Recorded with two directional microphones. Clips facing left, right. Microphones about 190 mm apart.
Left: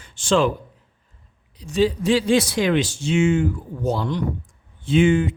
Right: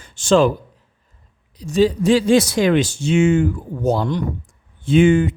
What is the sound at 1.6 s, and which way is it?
Speech, 45° right (ahead or behind).